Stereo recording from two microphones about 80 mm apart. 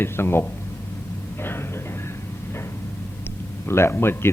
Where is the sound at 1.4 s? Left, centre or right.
Left.